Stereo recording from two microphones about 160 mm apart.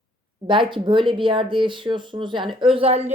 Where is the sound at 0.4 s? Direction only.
30° right (ahead or behind).